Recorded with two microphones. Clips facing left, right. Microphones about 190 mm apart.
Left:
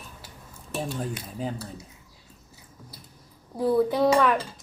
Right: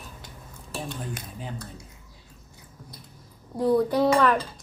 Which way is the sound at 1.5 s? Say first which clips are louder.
Left 2 dB; 5° left (ahead or behind).